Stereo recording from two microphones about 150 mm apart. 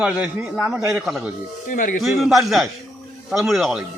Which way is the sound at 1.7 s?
60° left (ahead or behind).